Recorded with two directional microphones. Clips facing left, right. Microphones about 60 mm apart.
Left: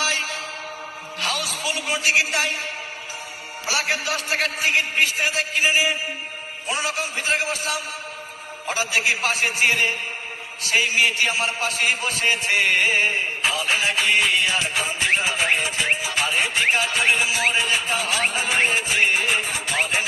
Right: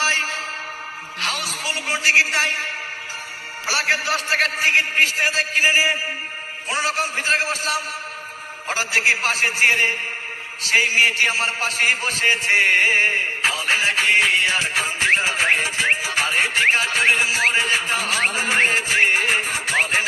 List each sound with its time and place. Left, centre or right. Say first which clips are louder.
0.0 s music: right 4 dB; right
1.2 s a man's voice: even; right
3.7 s a man's voice: right 3 dB; right
8.6 s a man's voice: right 2 dB; right